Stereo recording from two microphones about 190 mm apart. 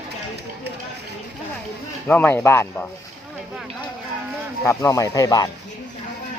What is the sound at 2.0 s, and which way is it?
Speech, 10° left (ahead or behind).